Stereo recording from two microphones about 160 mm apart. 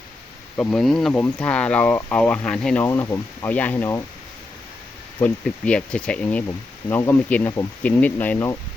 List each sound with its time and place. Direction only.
0.5 s speech: 5° left (ahead or behind)
2.8 s speech: 20° left (ahead or behind)
5.2 s speech: 5° left (ahead or behind)